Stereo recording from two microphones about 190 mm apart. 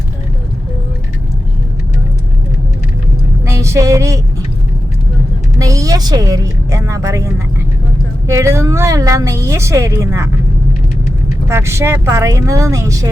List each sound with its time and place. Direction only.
3.4 s a sound: 15° right (ahead or behind)
5.5 s a woman's voice: 15° right (ahead or behind)
11.4 s a woman's voice: 15° right (ahead or behind)